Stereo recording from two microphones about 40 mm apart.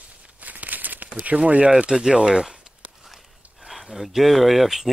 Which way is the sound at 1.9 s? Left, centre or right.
Right.